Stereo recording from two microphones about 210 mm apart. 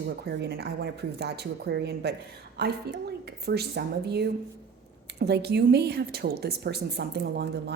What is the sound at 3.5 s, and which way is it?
A woman's voice, 50° right (ahead or behind).